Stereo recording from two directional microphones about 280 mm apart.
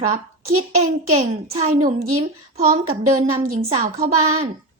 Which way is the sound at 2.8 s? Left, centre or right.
Right.